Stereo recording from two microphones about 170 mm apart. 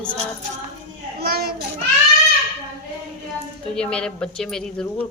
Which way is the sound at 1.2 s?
65° right (ahead or behind).